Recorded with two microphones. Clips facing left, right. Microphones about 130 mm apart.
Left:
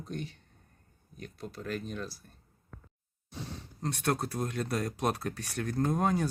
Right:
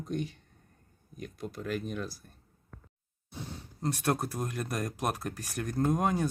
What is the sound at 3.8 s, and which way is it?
Speech, 10° right (ahead or behind).